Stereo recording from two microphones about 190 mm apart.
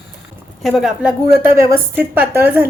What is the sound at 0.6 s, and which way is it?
Speech, centre (ahead or behind).